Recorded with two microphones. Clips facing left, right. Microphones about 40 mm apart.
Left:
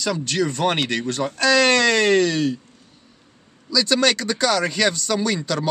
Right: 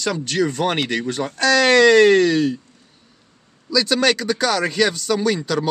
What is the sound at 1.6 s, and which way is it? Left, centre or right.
Speech, centre.